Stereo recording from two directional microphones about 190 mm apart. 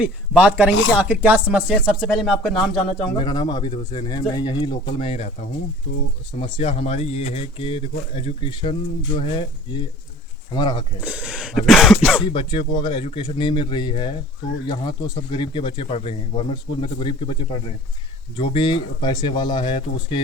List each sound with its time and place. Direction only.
0.0 s speech: 5° right (ahead or behind)
3.2 s speech: 25° left (ahead or behind)
6.3 s speech: 30° left (ahead or behind)
11.0 s speech: 5° right (ahead or behind)
12.2 s speech: 25° left (ahead or behind)